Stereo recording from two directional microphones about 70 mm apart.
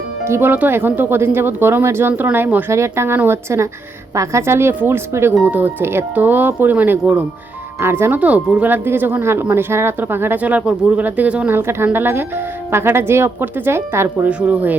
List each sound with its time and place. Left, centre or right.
0.3 s speech: right
2.7 s a woman's voice: right
5.5 s speech: right
8.2 s speech: centre
11.5 s speech: right
14.3 s speech: centre